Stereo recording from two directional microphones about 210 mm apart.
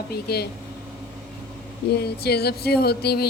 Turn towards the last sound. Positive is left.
turn(degrees=50)  # may be behind; listen again after turning